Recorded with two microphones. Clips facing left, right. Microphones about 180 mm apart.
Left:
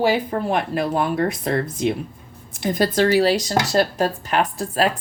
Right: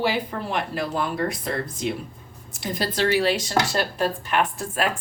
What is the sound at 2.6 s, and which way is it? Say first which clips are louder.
Speech: left 6 dB; 50° left (ahead or behind).